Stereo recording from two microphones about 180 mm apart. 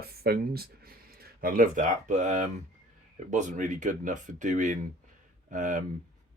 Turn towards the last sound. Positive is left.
turn(degrees=-45)  # may be behind; listen again after turning